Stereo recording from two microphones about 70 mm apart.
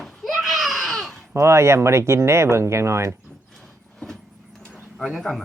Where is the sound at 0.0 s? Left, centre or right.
Centre.